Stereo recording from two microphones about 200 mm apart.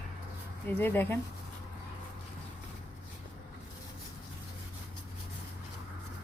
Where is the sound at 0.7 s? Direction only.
10° left (ahead or behind).